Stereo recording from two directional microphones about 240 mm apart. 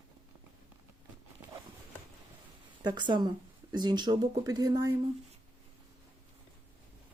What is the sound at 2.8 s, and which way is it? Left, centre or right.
Speech, centre.